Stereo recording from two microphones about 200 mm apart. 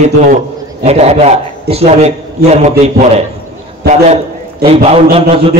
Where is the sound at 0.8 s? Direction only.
30° right (ahead or behind).